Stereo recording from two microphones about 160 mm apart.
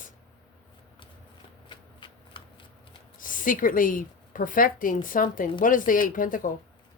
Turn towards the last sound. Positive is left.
turn(degrees=60)  # may be behind; listen again after turning